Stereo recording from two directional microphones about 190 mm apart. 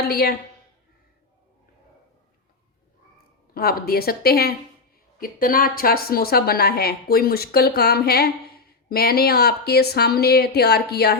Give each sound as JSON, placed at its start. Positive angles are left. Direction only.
{"t": 0.0, "sound": "a woman's voice", "side_deg": 55}
{"t": 3.5, "sound": "a woman's voice", "side_deg": 50}